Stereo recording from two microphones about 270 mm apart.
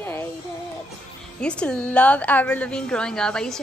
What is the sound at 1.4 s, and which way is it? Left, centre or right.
Speech, centre.